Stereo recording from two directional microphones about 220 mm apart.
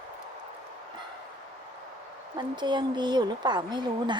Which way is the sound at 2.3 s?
20° right (ahead or behind).